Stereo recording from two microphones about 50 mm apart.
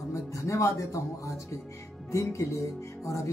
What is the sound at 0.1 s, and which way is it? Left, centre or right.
Speech, left.